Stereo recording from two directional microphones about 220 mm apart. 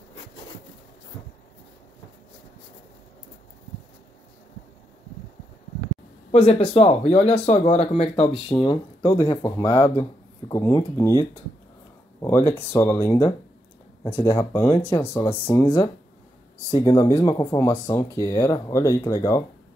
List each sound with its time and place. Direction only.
6.7 s speech: 30° left (ahead or behind)